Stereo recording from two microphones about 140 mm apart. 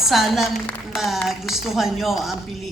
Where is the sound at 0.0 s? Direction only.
Centre (ahead or behind).